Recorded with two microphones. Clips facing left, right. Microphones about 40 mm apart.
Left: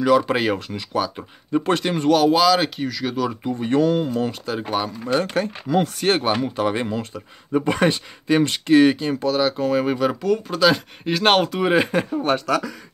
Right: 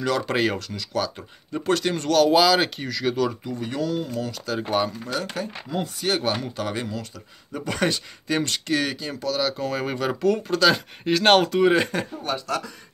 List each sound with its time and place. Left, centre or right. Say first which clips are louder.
0.0 s speech: left 5 dB; centre
0.6 s speech: left 3 dB; left
1.6 s speech: left 1 dB; left
2.3 s speech: left 1 dB; centre
3.4 s speech: left 8 dB; left
4.6 s speech: right 2 dB; centre
5.0 s speech: left 7 dB; left
5.7 s speech: left 10 dB; left
6.2 s speech: left 5 dB; left
9.6 s speech: left 6 dB; centre